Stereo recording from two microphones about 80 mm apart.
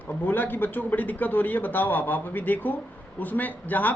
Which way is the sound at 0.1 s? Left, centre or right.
Left.